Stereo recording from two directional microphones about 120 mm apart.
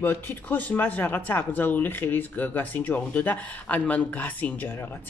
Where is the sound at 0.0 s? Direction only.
15° left (ahead or behind).